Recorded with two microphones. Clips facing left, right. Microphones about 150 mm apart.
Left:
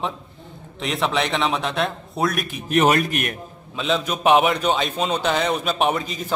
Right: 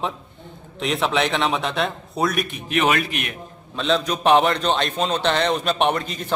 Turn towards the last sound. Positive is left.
turn(degrees=0)  # may be behind; listen again after turning